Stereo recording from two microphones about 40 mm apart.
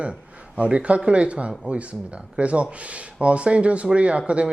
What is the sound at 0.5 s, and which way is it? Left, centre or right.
A man's voice, right.